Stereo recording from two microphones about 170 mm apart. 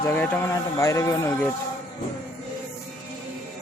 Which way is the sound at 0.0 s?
15° left (ahead or behind).